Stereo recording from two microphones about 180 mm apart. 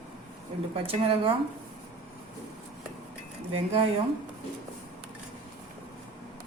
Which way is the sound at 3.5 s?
30° right (ahead or behind).